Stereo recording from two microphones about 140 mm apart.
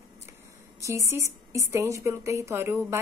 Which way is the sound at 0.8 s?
20° right (ahead or behind).